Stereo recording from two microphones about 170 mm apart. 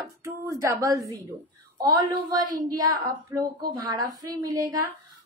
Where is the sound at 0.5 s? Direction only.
20° right (ahead or behind).